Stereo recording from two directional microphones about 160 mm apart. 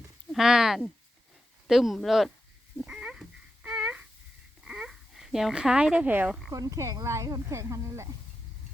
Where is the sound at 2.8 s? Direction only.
5° right (ahead or behind).